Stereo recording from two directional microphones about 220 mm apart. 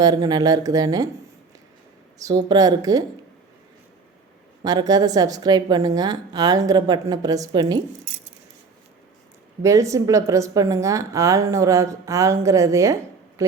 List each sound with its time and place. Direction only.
0.0 s a woman's voice: 15° right (ahead or behind)
2.1 s a woman's voice: 15° right (ahead or behind)
4.6 s a woman's voice: 15° right (ahead or behind)
9.6 s a woman's voice: 15° right (ahead or behind)